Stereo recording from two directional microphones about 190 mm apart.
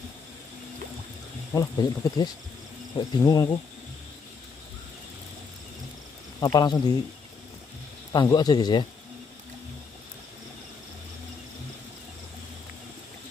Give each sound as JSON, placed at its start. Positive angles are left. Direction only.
{"t": 1.5, "sound": "speech", "side_deg": 20}
{"t": 6.4, "sound": "speech", "side_deg": 20}
{"t": 8.1, "sound": "speech", "side_deg": 20}